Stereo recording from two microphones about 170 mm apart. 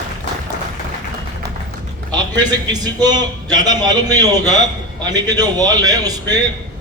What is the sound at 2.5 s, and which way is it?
A man's voice, 25° right (ahead or behind).